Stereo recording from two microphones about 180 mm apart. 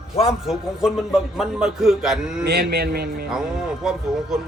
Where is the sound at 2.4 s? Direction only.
65° right (ahead or behind).